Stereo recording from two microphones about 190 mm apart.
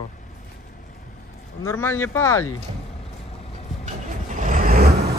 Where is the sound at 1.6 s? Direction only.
15° left (ahead or behind).